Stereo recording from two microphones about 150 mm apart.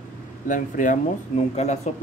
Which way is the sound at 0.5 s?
60° left (ahead or behind).